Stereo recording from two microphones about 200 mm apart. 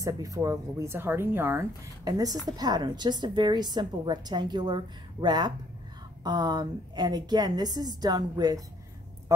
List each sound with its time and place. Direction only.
0.0 s a woman's voice: 15° right (ahead or behind)